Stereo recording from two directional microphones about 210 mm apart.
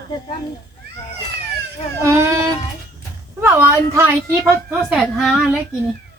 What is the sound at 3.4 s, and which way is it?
A woman's voice, 10° right (ahead or behind).